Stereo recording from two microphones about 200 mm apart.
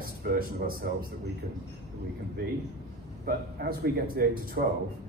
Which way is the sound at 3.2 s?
50° right (ahead or behind).